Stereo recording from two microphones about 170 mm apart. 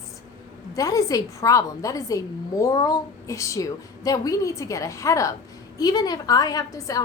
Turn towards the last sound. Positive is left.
turn(degrees=20)  # may be behind; listen again after turning